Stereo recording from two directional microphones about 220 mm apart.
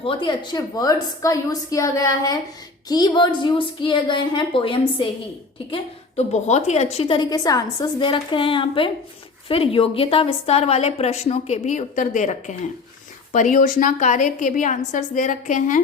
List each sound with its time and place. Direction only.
0.0 s a woman's voice: 25° left (ahead or behind)